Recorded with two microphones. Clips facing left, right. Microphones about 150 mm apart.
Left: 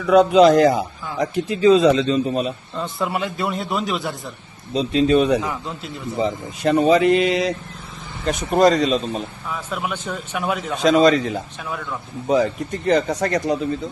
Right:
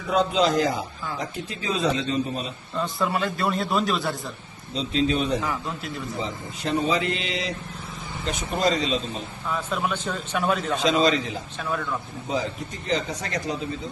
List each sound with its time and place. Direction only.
0.1 s speech: 70° left (ahead or behind)
2.7 s a man's voice: 15° left (ahead or behind)
4.7 s speech: 60° left (ahead or behind)
9.5 s a man's voice: 10° left (ahead or behind)
10.8 s a man's voice: 50° left (ahead or behind)
12.3 s speech: 60° left (ahead or behind)